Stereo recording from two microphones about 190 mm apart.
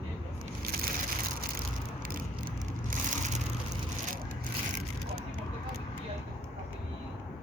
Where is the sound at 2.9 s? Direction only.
45° right (ahead or behind).